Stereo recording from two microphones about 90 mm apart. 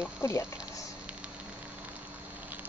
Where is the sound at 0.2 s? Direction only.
30° left (ahead or behind).